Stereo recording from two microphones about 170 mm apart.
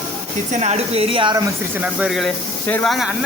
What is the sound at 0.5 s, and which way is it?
Speech, 40° right (ahead or behind).